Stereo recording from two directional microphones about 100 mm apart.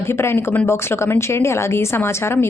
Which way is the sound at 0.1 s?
25° left (ahead or behind).